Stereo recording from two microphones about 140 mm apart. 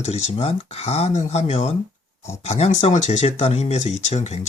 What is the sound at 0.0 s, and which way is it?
Speech, 50° left (ahead or behind).